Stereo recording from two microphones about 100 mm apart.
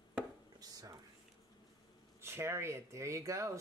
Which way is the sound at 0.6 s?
40° right (ahead or behind).